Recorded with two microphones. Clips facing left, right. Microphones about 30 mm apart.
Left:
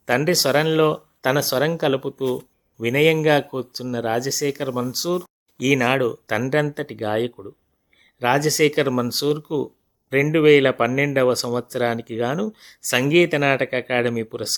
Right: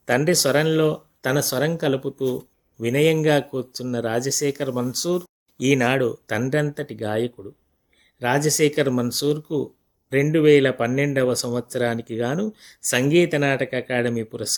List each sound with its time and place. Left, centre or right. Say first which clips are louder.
0.0 s speech: even; centre
2.2 s speech: even; left
2.7 s speech: left 1 dB; centre